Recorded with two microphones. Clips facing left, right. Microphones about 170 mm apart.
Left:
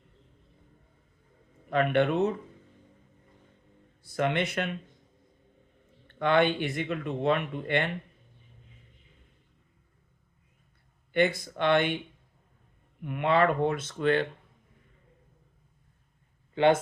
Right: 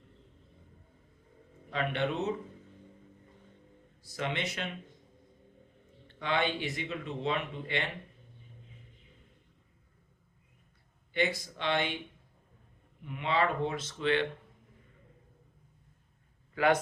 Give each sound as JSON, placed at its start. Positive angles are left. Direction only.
{"t": 1.7, "sound": "speech", "side_deg": 55}
{"t": 4.0, "sound": "speech", "side_deg": 55}
{"t": 6.1, "sound": "speech", "side_deg": 55}
{"t": 11.1, "sound": "speech", "side_deg": 55}
{"t": 13.0, "sound": "speech", "side_deg": 55}
{"t": 16.6, "sound": "speech", "side_deg": 25}